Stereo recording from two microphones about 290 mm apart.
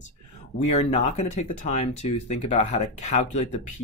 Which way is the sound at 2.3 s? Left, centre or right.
Left.